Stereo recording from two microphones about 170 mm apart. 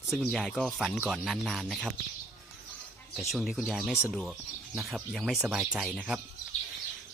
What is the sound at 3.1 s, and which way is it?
Speech, centre (ahead or behind).